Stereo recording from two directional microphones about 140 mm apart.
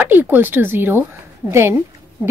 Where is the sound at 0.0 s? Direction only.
15° right (ahead or behind).